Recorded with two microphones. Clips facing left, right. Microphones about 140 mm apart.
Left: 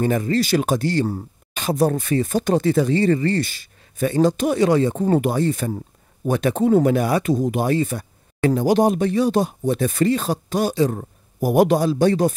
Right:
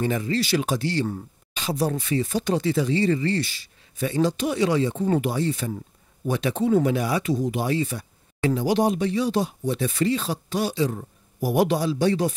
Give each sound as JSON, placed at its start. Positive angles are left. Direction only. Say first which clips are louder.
{"t": 0.0, "sound": "speech", "louder": "left 5 dB", "side_deg": 45}